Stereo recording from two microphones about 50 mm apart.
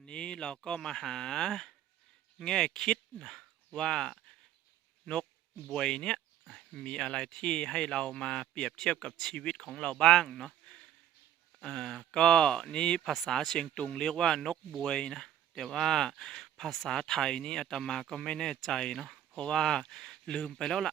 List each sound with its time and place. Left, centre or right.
0.0 s speech: centre
5.7 s speech: centre
6.5 s a sound: centre
6.8 s speech: centre
13.0 s speech: centre
18.9 s a sound: centre
19.4 s speech: centre